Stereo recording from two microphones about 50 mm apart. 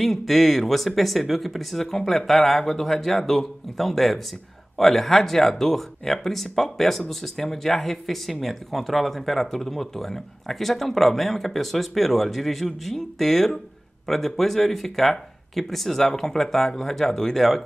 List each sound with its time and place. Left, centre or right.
0.0 s speech: centre